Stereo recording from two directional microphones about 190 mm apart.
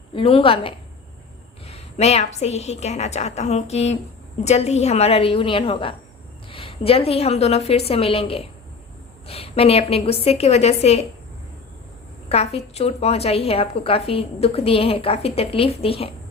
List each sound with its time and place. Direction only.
0.1 s a woman's voice: 30° left (ahead or behind)
12.5 s a woman's voice: 35° left (ahead or behind)